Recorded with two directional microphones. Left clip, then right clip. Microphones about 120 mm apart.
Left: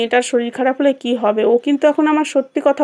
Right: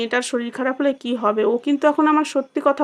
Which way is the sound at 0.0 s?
20° left (ahead or behind).